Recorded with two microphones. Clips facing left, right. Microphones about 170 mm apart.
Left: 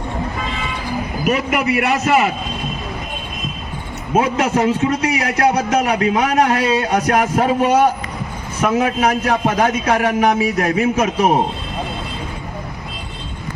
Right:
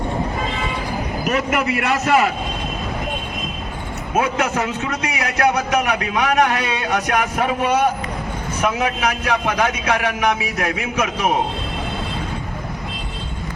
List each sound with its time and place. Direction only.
1.2 s a man's voice: 10° left (ahead or behind)
4.1 s a man's voice: 30° left (ahead or behind)